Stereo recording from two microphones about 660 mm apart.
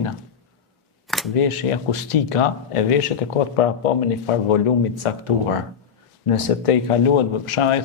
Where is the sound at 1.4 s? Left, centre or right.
Left.